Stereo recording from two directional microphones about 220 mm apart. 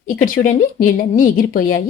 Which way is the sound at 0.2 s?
35° left (ahead or behind).